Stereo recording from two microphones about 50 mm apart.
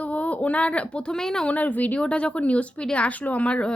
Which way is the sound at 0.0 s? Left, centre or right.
Left.